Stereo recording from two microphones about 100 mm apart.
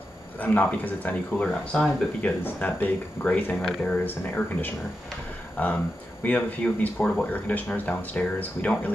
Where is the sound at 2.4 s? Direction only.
20° left (ahead or behind).